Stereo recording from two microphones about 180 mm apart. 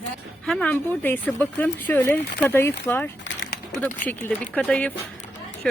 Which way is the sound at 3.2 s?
90° left.